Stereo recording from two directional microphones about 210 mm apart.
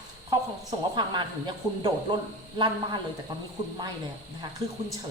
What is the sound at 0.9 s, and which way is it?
Speech, 20° right (ahead or behind).